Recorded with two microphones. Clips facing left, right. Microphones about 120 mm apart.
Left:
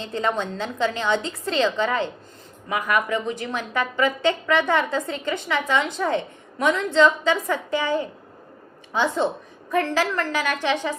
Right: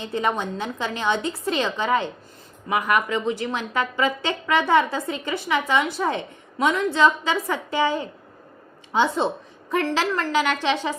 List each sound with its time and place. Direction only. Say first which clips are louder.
0.0 s a woman's voice: even; 15° right (ahead or behind)